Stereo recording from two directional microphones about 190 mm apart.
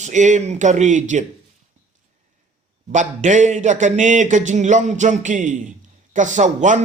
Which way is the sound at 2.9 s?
40° right (ahead or behind).